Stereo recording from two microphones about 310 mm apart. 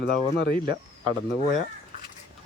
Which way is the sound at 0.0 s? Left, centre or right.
Left.